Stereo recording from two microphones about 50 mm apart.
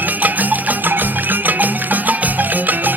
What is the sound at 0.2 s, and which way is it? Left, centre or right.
Music, right.